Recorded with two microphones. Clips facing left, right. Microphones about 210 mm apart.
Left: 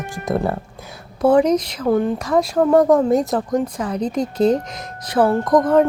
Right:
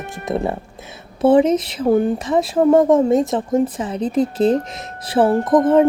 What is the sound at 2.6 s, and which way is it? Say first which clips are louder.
Speech: right 2 dB; 20° right (ahead or behind).